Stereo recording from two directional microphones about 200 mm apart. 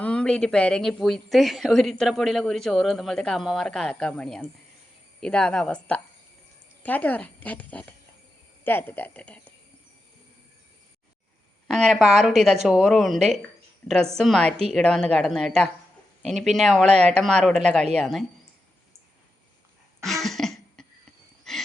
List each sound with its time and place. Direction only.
0.0 s speech: 5° left (ahead or behind)
11.7 s speech: centre (ahead or behind)
20.2 s cough: centre (ahead or behind)
21.5 s wild animals: centre (ahead or behind)